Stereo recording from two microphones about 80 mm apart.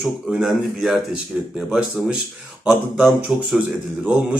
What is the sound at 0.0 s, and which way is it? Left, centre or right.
Speech, centre.